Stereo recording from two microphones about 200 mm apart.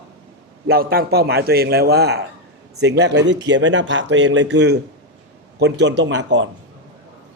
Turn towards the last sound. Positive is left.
turn(degrees=-65)  # may be behind; listen again after turning